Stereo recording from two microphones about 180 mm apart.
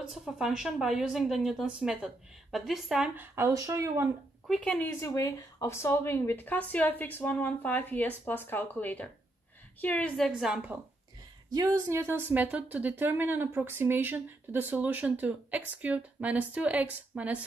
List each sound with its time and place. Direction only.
0.1 s a woman's voice: centre (ahead or behind)
4.5 s a woman's voice: 5° left (ahead or behind)
11.5 s speech: 20° right (ahead or behind)